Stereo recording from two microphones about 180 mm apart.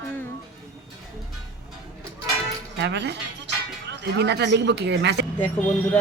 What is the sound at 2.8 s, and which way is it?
Speech, 75° right (ahead or behind).